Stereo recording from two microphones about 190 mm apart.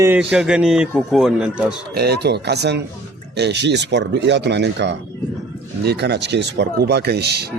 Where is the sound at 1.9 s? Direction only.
60° right (ahead or behind).